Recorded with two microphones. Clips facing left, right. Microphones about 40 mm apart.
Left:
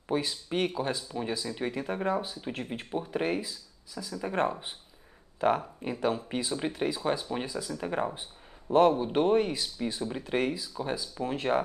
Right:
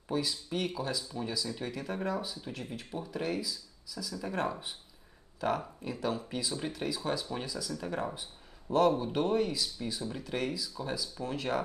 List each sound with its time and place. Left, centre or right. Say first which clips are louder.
0.1 s speech: left 3 dB; left